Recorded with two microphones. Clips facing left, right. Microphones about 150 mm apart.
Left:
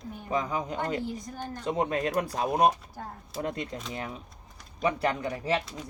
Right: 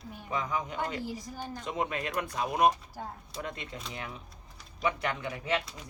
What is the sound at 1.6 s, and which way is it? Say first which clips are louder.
Speech: left 6 dB; 35° left (ahead or behind).